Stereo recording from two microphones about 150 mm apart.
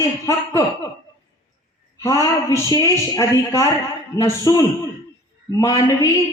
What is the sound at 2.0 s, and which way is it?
A woman's voice, 20° left (ahead or behind).